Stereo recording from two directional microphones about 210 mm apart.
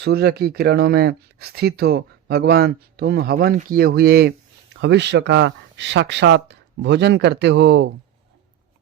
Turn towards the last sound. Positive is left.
turn(degrees=-55)  # may be behind; listen again after turning